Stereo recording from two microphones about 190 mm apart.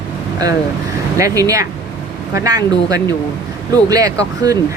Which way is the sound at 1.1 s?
15° right (ahead or behind).